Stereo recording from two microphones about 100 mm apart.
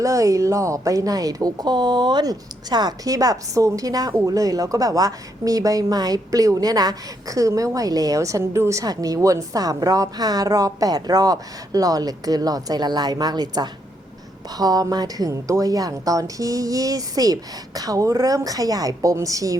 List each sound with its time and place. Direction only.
0.0 s a woman's voice: 35° right (ahead or behind)